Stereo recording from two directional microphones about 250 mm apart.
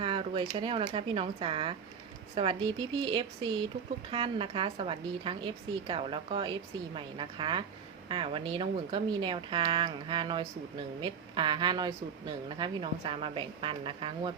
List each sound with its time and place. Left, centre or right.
0.0 s a woman's voice: right